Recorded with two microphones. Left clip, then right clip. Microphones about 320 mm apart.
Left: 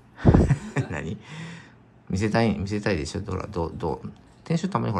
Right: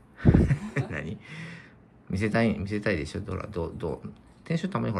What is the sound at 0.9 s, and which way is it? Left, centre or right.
Speech, centre.